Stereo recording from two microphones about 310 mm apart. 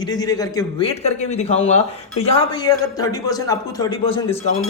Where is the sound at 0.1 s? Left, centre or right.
Centre.